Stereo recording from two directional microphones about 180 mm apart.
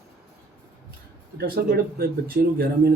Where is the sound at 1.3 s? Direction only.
60° right (ahead or behind).